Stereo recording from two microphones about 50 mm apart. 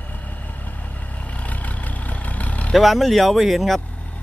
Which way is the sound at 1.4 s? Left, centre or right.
Left.